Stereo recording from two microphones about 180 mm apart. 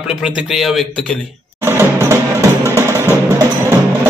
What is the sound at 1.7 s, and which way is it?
Music, 15° right (ahead or behind).